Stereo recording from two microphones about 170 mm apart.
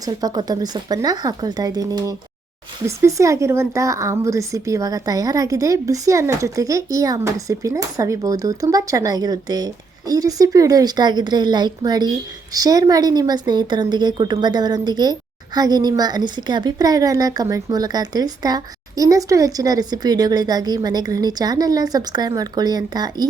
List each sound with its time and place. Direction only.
0.0 s a woman's voice: 20° right (ahead or behind)